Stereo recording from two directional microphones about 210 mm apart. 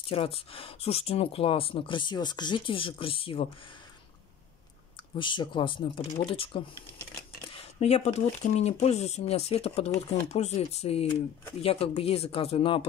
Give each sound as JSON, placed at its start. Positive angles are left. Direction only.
{"t": 0.0, "sound": "speech", "side_deg": 25}
{"t": 5.1, "sound": "speech", "side_deg": 25}